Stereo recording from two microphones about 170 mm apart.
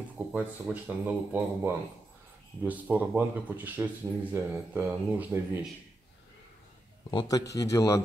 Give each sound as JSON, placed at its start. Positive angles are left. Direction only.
{"t": 0.3, "sound": "speech", "side_deg": -10}
{"t": 7.1, "sound": "a man's voice", "side_deg": 25}